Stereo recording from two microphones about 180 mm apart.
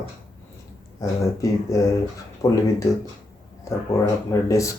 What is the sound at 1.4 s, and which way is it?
Speech, 20° left (ahead or behind).